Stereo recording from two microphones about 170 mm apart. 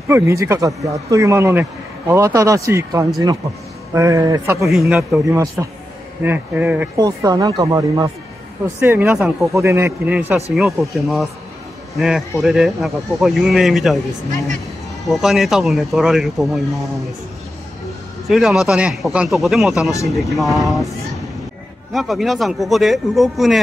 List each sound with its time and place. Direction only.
0.1 s a man's voice: 15° right (ahead or behind)
4.6 s a man's voice: 5° right (ahead or behind)
7.0 s speech: 20° right (ahead or behind)
8.6 s a man's voice: 10° right (ahead or behind)
15.0 s speech: centre (ahead or behind)
18.2 s speech: centre (ahead or behind)
21.9 s speech: centre (ahead or behind)